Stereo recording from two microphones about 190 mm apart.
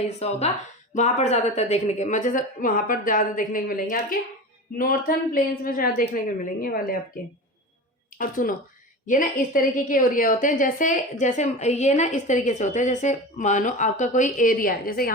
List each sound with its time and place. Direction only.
0.2 s a woman's voice: 35° left (ahead or behind)